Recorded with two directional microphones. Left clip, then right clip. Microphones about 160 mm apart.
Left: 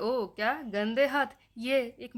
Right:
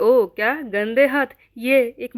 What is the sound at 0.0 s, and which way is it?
A woman's voice, 30° right (ahead or behind).